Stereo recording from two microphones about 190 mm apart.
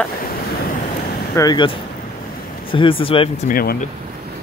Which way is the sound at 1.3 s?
20° left (ahead or behind).